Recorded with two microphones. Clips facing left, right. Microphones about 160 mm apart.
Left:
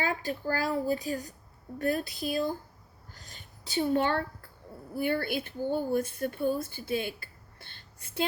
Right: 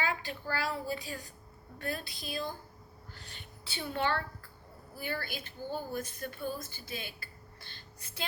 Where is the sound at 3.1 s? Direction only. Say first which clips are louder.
Even; 40° left (ahead or behind).